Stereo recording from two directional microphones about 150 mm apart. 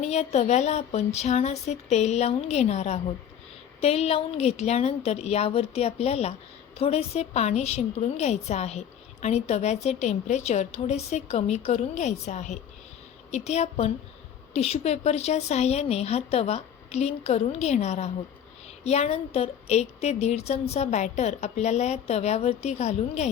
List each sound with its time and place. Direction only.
0.0 s a woman's voice: 45° left (ahead or behind)